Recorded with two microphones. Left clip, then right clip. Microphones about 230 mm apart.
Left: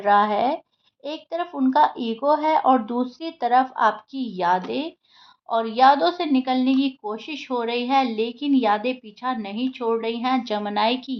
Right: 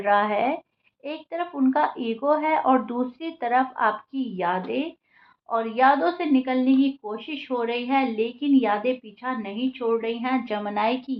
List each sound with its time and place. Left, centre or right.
0.0 s speech: left